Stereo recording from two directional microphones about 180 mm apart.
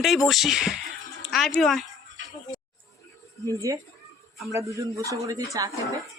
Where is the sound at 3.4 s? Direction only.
20° right (ahead or behind).